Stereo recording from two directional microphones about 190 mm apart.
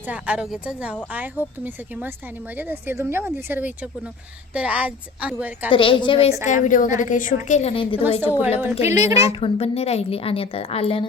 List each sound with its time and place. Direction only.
0.1 s a woman's voice: 5° right (ahead or behind)
5.7 s a woman's voice: 25° left (ahead or behind)
6.4 s a woman's voice: 40° left (ahead or behind)
8.9 s a woman's voice: 15° right (ahead or behind)
9.2 s a woman's voice: 30° left (ahead or behind)